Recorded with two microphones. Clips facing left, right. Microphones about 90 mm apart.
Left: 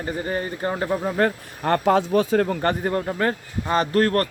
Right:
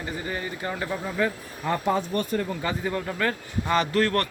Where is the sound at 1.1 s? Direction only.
60° left (ahead or behind).